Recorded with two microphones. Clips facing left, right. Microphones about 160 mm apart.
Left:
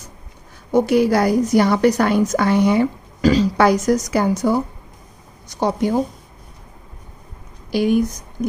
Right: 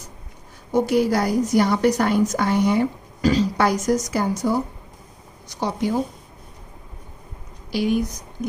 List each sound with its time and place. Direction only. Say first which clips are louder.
0.7 s a woman's voice: left 4 dB; 70° left (ahead or behind)
5.5 s speech: left 4 dB; 50° left (ahead or behind)
7.7 s speech: left 4 dB; 50° left (ahead or behind)